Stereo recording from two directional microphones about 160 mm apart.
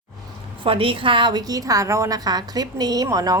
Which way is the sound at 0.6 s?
35° right (ahead or behind).